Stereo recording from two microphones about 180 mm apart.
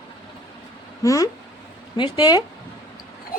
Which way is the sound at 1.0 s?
15° left (ahead or behind).